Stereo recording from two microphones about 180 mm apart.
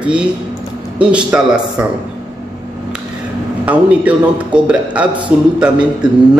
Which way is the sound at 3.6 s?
10° right (ahead or behind).